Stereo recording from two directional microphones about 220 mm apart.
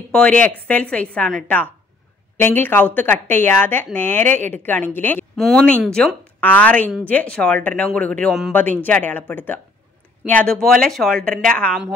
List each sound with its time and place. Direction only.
0.1 s speech: 5° left (ahead or behind)